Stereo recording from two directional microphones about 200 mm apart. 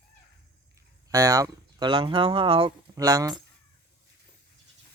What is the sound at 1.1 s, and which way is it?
Speech, 15° right (ahead or behind).